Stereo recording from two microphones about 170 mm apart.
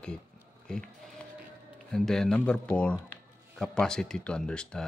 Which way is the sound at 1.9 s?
5° left (ahead or behind).